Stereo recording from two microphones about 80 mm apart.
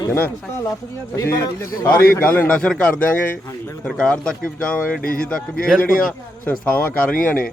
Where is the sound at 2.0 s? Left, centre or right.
Left.